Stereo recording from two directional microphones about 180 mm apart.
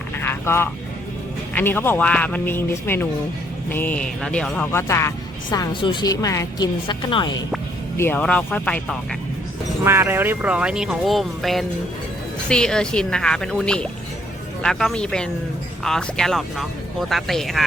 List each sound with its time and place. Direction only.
0.2 s vehicle: 10° left (ahead or behind)
1.5 s speech: 10° left (ahead or behind); by 7.3 s 25° left (ahead or behind)
7.9 s speech: 10° left (ahead or behind)
9.8 s speech: 15° right (ahead or behind)